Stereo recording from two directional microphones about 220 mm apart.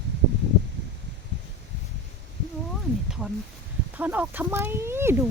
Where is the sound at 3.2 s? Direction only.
5° right (ahead or behind).